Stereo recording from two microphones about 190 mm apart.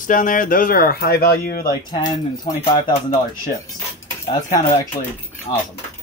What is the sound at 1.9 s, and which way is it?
Speech, 20° left (ahead or behind).